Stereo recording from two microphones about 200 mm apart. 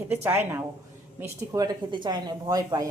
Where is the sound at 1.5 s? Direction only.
20° right (ahead or behind).